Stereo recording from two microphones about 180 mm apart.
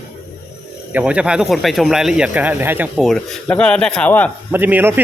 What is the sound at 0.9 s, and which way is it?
Speech, 5° right (ahead or behind).